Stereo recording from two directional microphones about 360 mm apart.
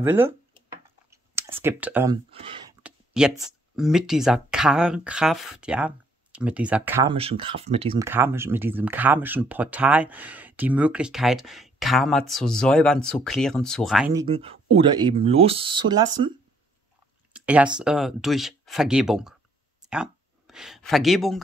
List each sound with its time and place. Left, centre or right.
0.0 s speech: centre
1.1 s clicking: centre
2.8 s speech: centre
14.2 s speech: centre
19.8 s a sound: centre